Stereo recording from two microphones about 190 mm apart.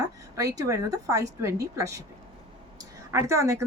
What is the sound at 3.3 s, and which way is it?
Speech, 15° right (ahead or behind).